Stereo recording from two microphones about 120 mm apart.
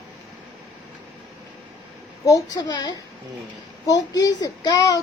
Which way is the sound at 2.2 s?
30° left (ahead or behind).